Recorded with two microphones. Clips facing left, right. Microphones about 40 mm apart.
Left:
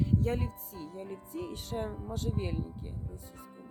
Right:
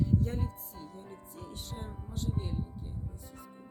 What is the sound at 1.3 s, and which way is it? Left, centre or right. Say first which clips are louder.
Speech: left 8 dB; left.